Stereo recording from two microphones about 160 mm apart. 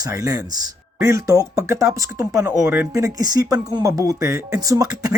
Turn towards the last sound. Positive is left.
turn(degrees=-20)  # may be behind; listen again after turning